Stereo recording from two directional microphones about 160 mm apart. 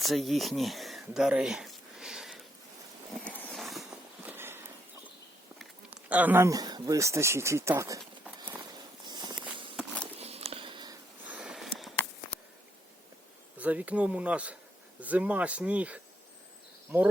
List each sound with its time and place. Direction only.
0.0 s speech: centre (ahead or behind)
3.2 s a sound: 5° left (ahead or behind)
4.2 s walk: 15° right (ahead or behind)
5.9 s speech: 10° right (ahead or behind)
9.0 s walk: 25° right (ahead or behind)
9.7 s walk: 5° left (ahead or behind)
10.2 s a sound: 40° right (ahead or behind)
11.3 s a sound: 5° right (ahead or behind)
13.6 s speech: 10° right (ahead or behind)